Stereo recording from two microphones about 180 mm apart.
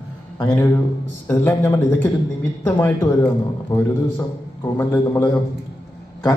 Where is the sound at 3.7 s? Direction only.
20° left (ahead or behind).